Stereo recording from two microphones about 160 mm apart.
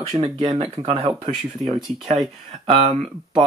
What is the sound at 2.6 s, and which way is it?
Speech, 35° right (ahead or behind).